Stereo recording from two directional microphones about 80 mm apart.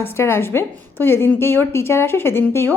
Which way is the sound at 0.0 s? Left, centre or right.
Left.